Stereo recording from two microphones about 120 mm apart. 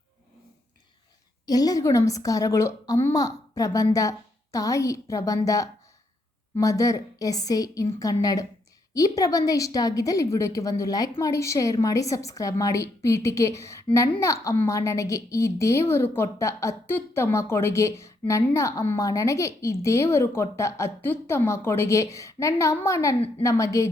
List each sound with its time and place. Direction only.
1.5 s a woman's voice: 30° left (ahead or behind)